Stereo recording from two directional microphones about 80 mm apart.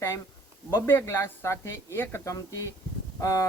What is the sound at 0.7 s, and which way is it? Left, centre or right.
Speech, left.